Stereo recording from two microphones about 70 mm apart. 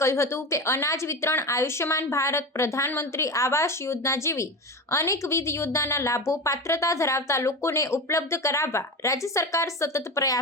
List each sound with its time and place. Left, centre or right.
0.0 s a woman's voice: left